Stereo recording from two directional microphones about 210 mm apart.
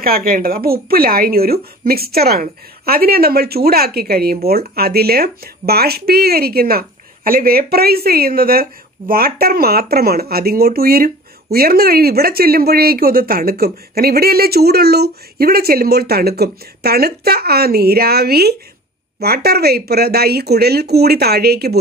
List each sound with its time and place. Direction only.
0.0 s speech: 45° right (ahead or behind)